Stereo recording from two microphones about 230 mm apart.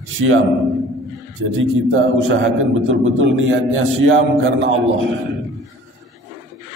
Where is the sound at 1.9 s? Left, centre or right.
Right.